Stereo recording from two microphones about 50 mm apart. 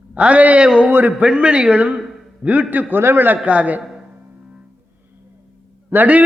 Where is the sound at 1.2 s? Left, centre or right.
Centre.